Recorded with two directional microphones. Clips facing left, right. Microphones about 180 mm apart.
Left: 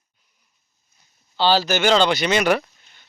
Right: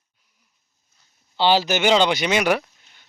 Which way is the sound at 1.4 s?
20° right (ahead or behind).